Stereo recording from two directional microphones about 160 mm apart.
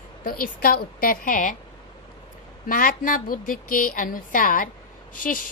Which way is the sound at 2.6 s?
60° left (ahead or behind).